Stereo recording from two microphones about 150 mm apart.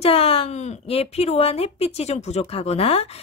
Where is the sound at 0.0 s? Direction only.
40° left (ahead or behind).